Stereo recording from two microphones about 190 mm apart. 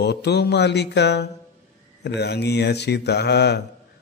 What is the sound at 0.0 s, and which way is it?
A man's voice, 60° left (ahead or behind).